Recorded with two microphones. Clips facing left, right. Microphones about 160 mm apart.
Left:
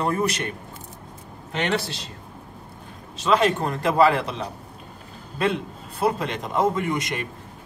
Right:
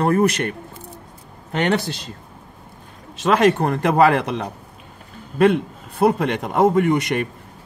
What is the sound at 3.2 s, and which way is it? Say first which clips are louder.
Speech: right 4 dB; 60° right (ahead or behind).